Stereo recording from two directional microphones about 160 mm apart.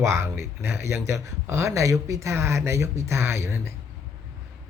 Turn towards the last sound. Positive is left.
turn(degrees=-15)  # may be behind; listen again after turning